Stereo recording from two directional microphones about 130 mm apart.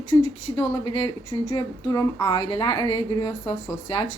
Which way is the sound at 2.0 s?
25° left (ahead or behind).